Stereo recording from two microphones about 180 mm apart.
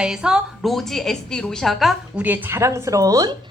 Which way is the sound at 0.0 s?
5° right (ahead or behind).